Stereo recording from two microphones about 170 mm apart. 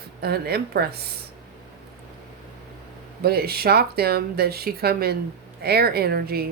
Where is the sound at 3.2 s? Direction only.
65° right (ahead or behind).